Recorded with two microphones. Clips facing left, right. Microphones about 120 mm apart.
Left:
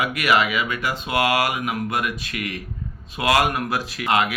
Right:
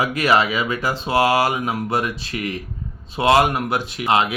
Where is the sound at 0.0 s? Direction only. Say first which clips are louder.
Right 2 dB; 30° right (ahead or behind).